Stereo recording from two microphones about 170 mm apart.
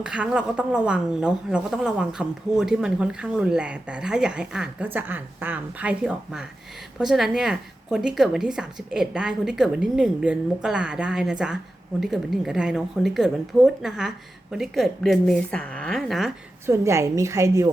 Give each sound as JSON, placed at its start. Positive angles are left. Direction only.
{"t": 0.0, "sound": "a woman's voice", "side_deg": -5}
{"t": 16.6, "sound": "a woman's voice", "side_deg": -15}